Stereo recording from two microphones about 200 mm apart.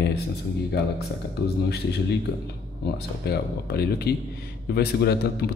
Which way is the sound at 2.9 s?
55° left (ahead or behind).